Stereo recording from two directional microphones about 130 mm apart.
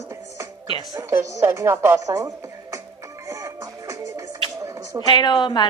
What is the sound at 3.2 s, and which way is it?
Music, 25° right (ahead or behind).